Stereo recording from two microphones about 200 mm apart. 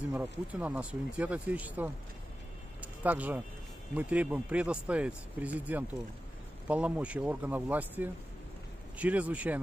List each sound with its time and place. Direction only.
0.1 s speech: 10° right (ahead or behind)